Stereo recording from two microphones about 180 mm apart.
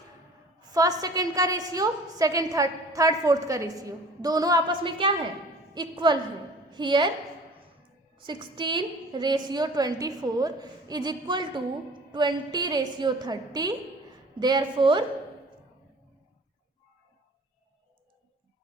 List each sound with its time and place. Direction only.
0.7 s a woman's voice: 20° right (ahead or behind)
8.1 s a woman's voice: 25° right (ahead or behind)